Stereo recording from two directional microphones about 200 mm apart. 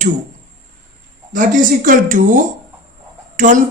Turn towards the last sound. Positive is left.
turn(degrees=-40)  # may be behind; listen again after turning